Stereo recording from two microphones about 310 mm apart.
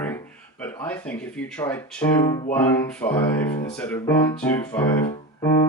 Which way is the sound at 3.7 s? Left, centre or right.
Centre.